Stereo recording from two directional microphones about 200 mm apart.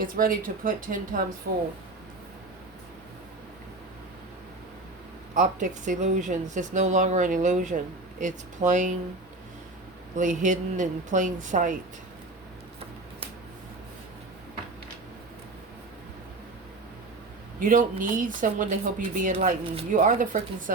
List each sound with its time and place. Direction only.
0.0 s speech: 45° right (ahead or behind)
1.5 s speech: 55° right (ahead or behind)
5.3 s speech: 40° right (ahead or behind)
10.2 s speech: 40° right (ahead or behind)
17.6 s speech: 40° right (ahead or behind)